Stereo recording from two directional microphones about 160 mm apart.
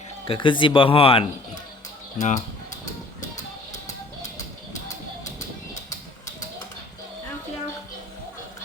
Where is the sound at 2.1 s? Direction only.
50° left (ahead or behind).